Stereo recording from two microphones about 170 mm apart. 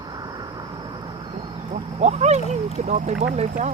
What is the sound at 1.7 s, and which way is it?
Speech, 40° right (ahead or behind).